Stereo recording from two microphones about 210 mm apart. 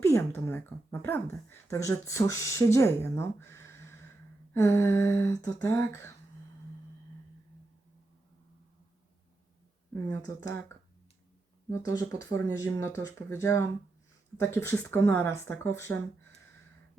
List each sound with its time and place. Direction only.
0.0 s speech: 15° left (ahead or behind)
10.1 s speech: 15° left (ahead or behind)
11.7 s speech: 15° left (ahead or behind)